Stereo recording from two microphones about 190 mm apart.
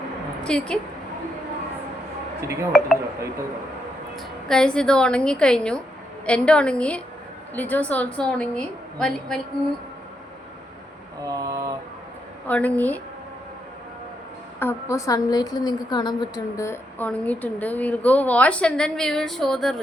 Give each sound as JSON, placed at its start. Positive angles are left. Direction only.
{"t": 0.4, "sound": "a woman's voice", "side_deg": 5}
{"t": 2.4, "sound": "speech", "side_deg": -15}
{"t": 4.4, "sound": "a woman's voice", "side_deg": 5}
{"t": 11.2, "sound": "a sound", "side_deg": -20}
{"t": 12.5, "sound": "a woman's voice", "side_deg": 10}
{"t": 14.6, "sound": "a woman's voice", "side_deg": 15}